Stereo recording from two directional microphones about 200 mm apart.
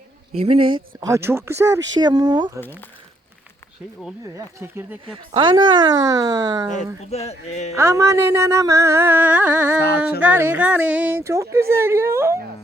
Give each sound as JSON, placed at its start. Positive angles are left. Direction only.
{"t": 0.3, "sound": "speech", "side_deg": -30}
{"t": 1.0, "sound": "music", "side_deg": -15}
{"t": 2.0, "sound": "speech", "side_deg": -20}
{"t": 4.4, "sound": "music", "side_deg": -10}
{"t": 5.1, "sound": "speech", "side_deg": -25}
{"t": 7.1, "sound": "speech", "side_deg": 30}
{"t": 7.8, "sound": "music", "side_deg": -15}